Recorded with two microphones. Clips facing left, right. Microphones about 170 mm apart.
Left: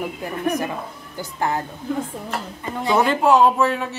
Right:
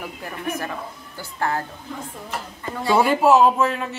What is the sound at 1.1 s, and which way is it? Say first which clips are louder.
Speech: left 2 dB; 20° left (ahead or behind).